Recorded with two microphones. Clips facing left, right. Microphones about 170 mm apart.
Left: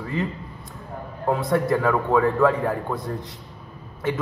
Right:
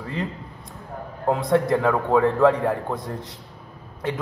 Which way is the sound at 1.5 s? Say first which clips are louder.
Right 2 dB; 20° right (ahead or behind).